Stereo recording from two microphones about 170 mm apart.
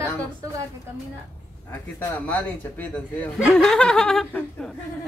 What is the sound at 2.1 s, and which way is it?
Speech, 10° left (ahead or behind).